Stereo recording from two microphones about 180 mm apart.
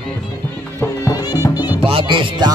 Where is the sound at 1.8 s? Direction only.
30° right (ahead or behind).